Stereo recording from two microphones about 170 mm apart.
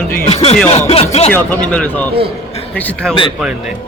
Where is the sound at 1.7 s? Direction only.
5° left (ahead or behind).